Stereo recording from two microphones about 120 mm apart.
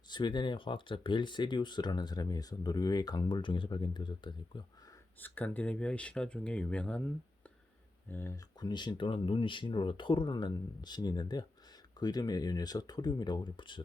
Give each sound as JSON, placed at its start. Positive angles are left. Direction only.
{"t": 0.1, "sound": "speech", "side_deg": 40}
{"t": 5.2, "sound": "speech", "side_deg": 15}
{"t": 8.1, "sound": "speech", "side_deg": 20}
{"t": 8.5, "sound": "speech", "side_deg": 35}